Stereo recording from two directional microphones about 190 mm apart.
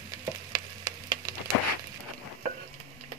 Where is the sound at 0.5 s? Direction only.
25° right (ahead or behind).